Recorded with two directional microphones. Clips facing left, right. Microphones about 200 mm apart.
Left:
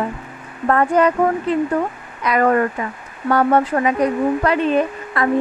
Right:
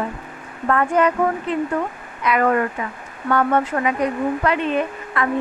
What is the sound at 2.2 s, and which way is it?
A woman's voice, 40° left (ahead or behind).